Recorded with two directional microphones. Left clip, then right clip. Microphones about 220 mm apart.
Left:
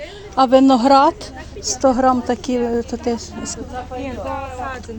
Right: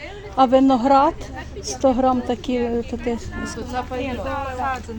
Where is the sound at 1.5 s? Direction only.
5° left (ahead or behind).